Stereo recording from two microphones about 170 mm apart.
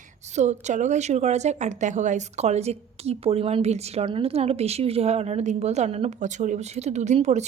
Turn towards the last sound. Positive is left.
turn(degrees=-40)  # may be behind; listen again after turning